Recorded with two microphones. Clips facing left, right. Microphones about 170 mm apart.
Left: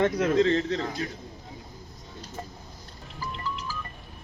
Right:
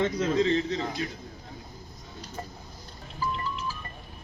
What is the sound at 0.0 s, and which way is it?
A man's voice, 60° left (ahead or behind).